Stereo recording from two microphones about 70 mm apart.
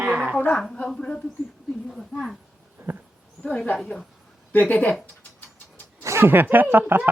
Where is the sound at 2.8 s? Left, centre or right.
Right.